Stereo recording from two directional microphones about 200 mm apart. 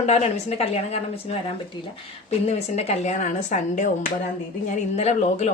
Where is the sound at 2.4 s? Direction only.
35° left (ahead or behind).